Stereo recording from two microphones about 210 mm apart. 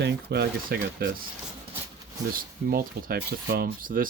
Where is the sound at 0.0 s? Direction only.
50° right (ahead or behind).